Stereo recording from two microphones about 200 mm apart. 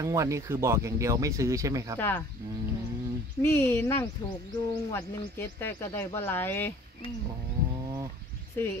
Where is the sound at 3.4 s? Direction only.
10° left (ahead or behind).